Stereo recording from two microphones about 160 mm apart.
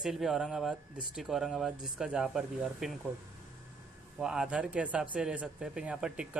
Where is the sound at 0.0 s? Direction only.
Centre (ahead or behind).